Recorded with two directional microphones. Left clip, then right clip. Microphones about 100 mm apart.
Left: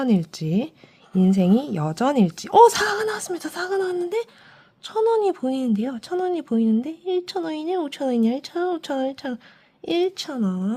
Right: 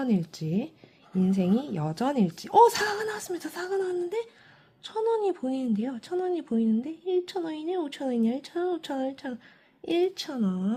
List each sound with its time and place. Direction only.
0.0 s speech: 50° left (ahead or behind); by 10.8 s 25° left (ahead or behind)